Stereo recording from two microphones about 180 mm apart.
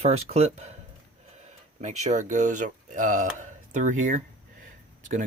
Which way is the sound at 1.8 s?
40° right (ahead or behind).